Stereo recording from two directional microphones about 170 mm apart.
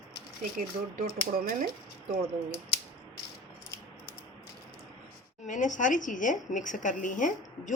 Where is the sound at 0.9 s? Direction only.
55° right (ahead or behind).